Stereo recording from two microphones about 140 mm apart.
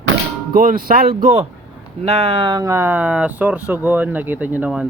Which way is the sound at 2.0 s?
50° right (ahead or behind).